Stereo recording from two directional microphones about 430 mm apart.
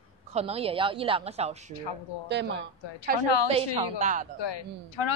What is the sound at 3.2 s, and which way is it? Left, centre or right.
Speech, left.